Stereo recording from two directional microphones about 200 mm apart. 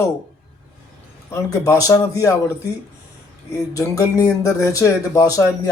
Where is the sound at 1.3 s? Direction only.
15° left (ahead or behind).